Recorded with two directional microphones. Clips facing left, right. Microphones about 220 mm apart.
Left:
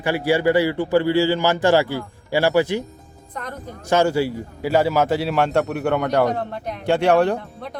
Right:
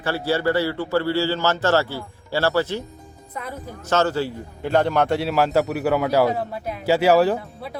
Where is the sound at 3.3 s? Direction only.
5° right (ahead or behind).